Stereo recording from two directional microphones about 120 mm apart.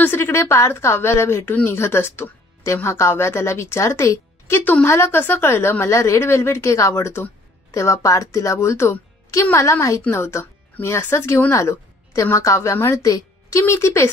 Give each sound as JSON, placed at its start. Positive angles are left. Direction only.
{"t": 0.0, "sound": "speech", "side_deg": 20}